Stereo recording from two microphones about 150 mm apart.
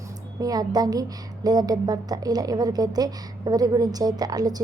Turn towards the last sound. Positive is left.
turn(degrees=-25)  # may be behind; listen again after turning